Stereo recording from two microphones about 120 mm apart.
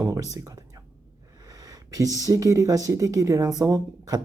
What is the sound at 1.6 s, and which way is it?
Speech, 30° right (ahead or behind).